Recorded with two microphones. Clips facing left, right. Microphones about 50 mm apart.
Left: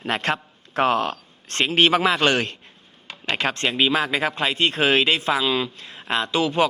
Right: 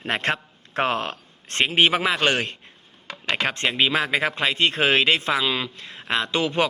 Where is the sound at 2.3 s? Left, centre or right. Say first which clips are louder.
Left 2 dB; right.